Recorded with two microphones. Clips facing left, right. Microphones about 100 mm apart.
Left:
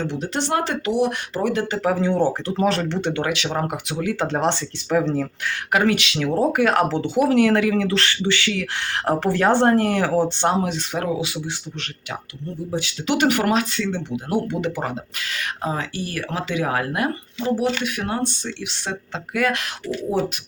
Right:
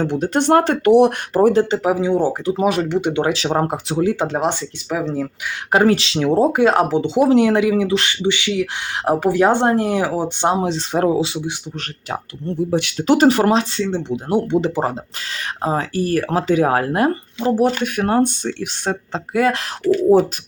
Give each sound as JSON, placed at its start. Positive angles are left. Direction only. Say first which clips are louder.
{"t": 0.0, "sound": "speech", "louder": "right 7 dB", "side_deg": -50}
{"t": 1.4, "sound": "speech", "louder": "right 9 dB", "side_deg": -40}
{"t": 1.7, "sound": "speech", "louder": "right 3 dB", "side_deg": -15}
{"t": 3.2, "sound": "speech", "louder": "right 5 dB", "side_deg": -35}
{"t": 4.3, "sound": "speech", "louder": "right 1 dB", "side_deg": -5}
{"t": 5.7, "sound": "speech", "louder": "right 5 dB", "side_deg": -30}
{"t": 10.7, "sound": "speech", "louder": "right 7 dB", "side_deg": -30}
{"t": 12.7, "sound": "speech", "louder": "right 4 dB", "side_deg": -60}
{"t": 13.1, "sound": "speech", "louder": "right 6 dB", "side_deg": -35}
{"t": 19.3, "sound": "speech", "louder": "right 4 dB", "side_deg": -30}